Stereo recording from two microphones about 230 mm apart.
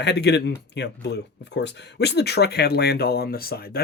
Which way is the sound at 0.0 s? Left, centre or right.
Left.